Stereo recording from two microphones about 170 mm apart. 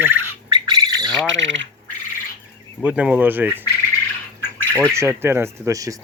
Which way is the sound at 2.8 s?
5° right (ahead or behind).